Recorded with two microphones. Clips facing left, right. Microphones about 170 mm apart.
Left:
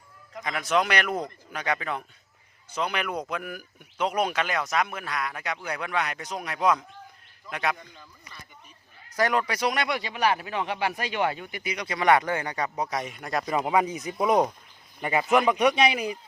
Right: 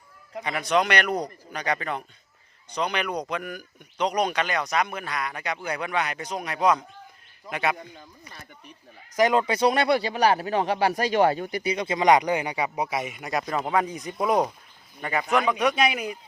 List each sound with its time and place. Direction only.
0.4 s speech: centre (ahead or behind)
9.1 s speech: 20° right (ahead or behind); by 14.5 s centre (ahead or behind)
15.0 s speech: 15° left (ahead or behind)
15.6 s speech: centre (ahead or behind)